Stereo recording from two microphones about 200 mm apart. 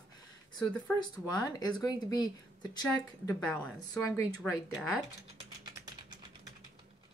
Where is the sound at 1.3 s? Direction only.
20° left (ahead or behind).